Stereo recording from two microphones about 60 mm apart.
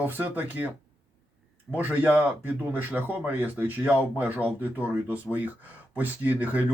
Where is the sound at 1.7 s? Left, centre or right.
Right.